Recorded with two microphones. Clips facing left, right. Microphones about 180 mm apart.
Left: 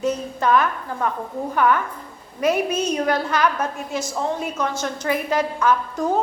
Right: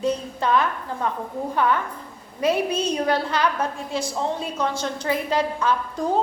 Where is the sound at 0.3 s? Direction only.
25° right (ahead or behind).